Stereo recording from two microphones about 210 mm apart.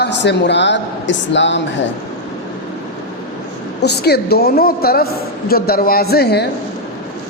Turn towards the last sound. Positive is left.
turn(degrees=50)  # may be behind; listen again after turning